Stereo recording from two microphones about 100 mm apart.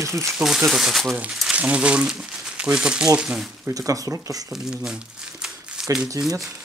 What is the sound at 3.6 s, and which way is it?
Speech, 35° right (ahead or behind).